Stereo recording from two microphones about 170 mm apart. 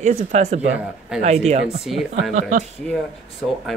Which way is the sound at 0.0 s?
45° right (ahead or behind).